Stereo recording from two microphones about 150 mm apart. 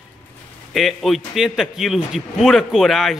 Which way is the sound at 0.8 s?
Centre (ahead or behind).